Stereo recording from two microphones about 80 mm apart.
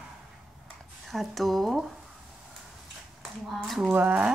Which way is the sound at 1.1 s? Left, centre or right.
Centre.